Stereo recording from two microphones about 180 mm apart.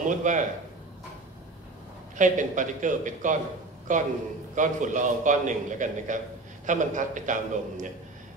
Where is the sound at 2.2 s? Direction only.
45° right (ahead or behind).